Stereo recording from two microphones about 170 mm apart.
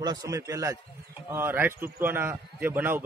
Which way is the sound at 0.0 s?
20° right (ahead or behind).